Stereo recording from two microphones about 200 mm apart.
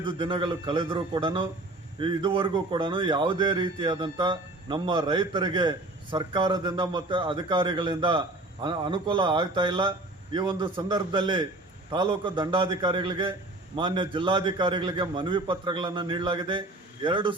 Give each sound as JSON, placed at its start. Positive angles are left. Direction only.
{"t": 0.0, "sound": "a man's voice", "side_deg": -25}